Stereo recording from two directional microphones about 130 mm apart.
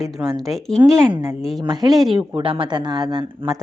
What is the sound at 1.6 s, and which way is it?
Speech, 30° right (ahead or behind).